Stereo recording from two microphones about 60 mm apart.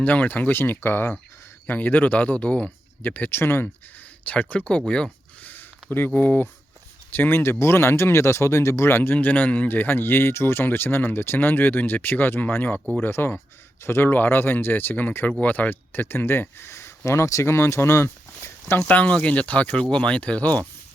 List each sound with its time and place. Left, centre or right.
0.0 s speech: left
3.2 s speech: left
4.3 s speech: left
5.4 s a sound: left
6.1 s speech: left
8.9 s speech: left
17.5 s speech: left
18.9 s speech: left